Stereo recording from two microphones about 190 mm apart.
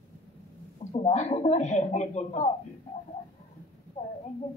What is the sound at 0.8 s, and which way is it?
Speech, 35° left (ahead or behind).